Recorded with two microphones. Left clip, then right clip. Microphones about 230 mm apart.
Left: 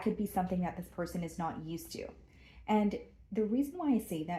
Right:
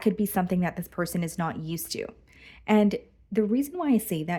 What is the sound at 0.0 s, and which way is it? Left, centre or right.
Speech, right.